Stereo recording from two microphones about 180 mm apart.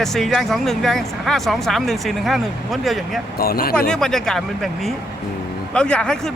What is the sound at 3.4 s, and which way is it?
Speech, 55° left (ahead or behind).